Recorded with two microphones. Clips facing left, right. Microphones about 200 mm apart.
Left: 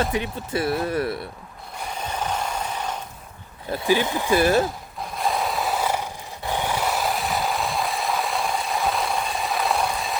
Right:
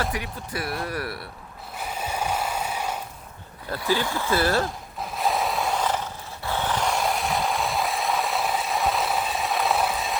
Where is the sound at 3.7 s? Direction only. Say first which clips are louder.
Left 4 dB; 20° left (ahead or behind).